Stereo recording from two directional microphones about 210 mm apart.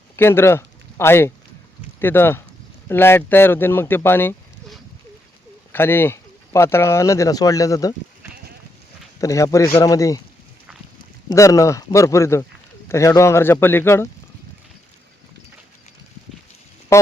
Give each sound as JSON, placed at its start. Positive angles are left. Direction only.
{"t": 0.2, "sound": "speech", "side_deg": 10}
{"t": 9.2, "sound": "speech", "side_deg": 15}
{"t": 11.3, "sound": "speech", "side_deg": 15}
{"t": 16.9, "sound": "a sound", "side_deg": 15}